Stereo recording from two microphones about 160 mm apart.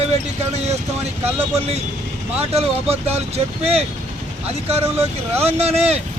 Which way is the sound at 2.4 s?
40° right (ahead or behind).